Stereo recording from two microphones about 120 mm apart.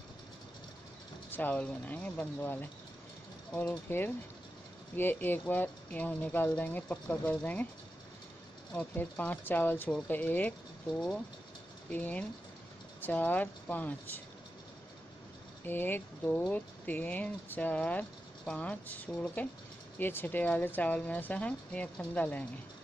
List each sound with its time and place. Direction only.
1.3 s speech: 15° left (ahead or behind)
8.7 s speech: 10° left (ahead or behind)
11.9 s speech: 15° left (ahead or behind)
15.6 s speech: 15° left (ahead or behind)